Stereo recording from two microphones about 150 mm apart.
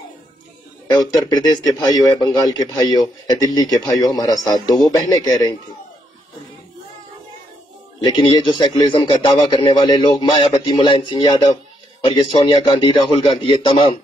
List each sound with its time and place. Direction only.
0.8 s a man's voice: 25° left (ahead or behind)
8.0 s a man's voice: 30° left (ahead or behind)